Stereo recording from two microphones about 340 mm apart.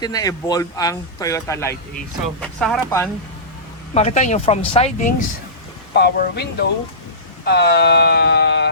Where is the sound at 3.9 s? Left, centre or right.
Centre.